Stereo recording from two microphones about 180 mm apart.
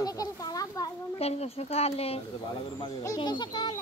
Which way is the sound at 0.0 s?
20° left (ahead or behind).